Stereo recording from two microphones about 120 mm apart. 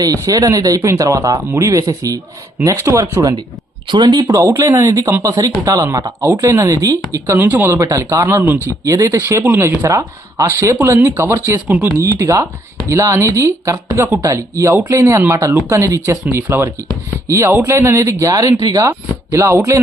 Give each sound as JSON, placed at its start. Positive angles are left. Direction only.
{"t": 0.0, "sound": "speech", "side_deg": -30}
{"t": 3.8, "sound": "speech", "side_deg": -40}
{"t": 7.3, "sound": "speech", "side_deg": -15}